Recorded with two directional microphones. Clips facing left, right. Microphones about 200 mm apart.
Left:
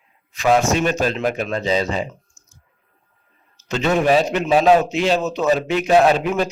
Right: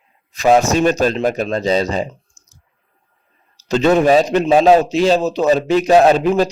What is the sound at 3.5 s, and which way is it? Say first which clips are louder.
A man's voice: right 6 dB; 35° right (ahead or behind).